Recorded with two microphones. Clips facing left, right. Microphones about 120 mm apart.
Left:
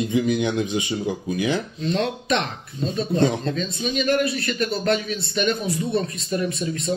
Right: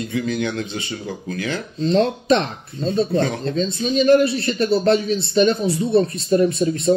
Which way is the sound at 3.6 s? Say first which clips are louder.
Right 6 dB; 35° right (ahead or behind).